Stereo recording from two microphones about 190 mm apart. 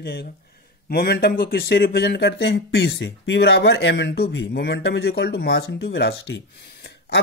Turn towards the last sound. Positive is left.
turn(degrees=70)  # may be behind; listen again after turning